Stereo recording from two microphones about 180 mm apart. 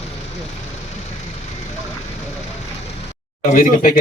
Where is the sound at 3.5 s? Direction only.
50° left (ahead or behind).